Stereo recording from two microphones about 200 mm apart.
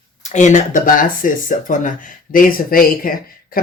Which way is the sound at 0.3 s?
35° left (ahead or behind).